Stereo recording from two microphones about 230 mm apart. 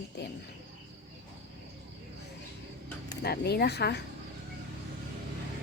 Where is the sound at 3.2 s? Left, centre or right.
Left.